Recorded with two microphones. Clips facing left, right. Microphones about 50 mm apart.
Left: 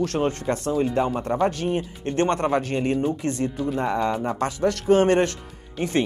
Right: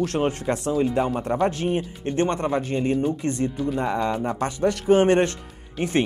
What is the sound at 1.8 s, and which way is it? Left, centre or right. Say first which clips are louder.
Speech: even; centre.